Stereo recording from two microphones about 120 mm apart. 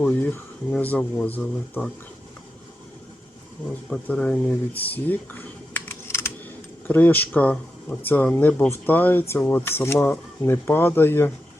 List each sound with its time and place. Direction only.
0.0 s speech: 15° left (ahead or behind)
3.8 s speech: 10° left (ahead or behind)
4.8 s computer keyboard: 15° left (ahead or behind)
6.8 s speech: 15° left (ahead or behind)